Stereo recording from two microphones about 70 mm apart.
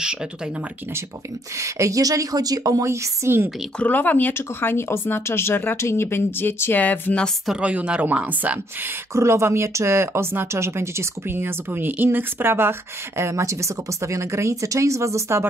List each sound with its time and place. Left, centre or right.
1.6 s speech: right
2.8 s speech: right
3.8 s speech: left
7.6 s speech: centre
9.1 s speech: right